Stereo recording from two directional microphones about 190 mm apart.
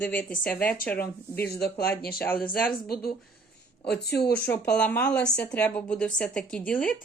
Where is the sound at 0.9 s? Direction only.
55° left (ahead or behind).